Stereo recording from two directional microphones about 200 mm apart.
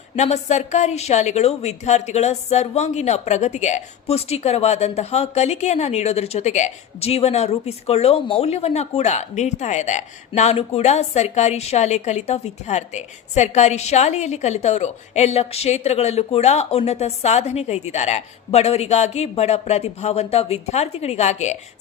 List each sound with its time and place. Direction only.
0.2 s a woman's voice: 35° left (ahead or behind)